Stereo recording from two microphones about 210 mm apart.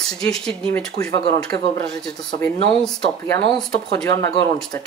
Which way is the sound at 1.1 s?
25° left (ahead or behind).